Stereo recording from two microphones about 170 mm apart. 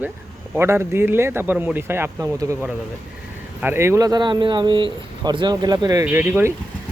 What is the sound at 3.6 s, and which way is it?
Speech, 15° right (ahead or behind).